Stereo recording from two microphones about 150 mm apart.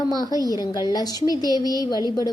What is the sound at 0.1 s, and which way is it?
A woman's voice, 25° left (ahead or behind).